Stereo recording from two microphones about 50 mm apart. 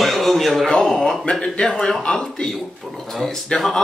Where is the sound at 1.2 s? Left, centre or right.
Centre.